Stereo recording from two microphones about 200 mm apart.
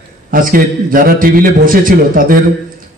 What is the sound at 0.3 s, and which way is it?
A man's voice, 45° right (ahead or behind).